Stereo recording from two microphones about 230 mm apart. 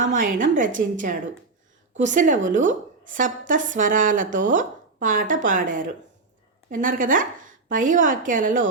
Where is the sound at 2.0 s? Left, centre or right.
Right.